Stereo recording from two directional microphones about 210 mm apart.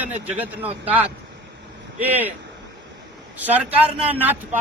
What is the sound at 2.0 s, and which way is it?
Speech, 10° right (ahead or behind).